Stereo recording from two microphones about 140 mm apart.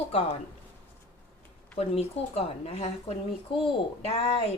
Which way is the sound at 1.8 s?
45° left (ahead or behind).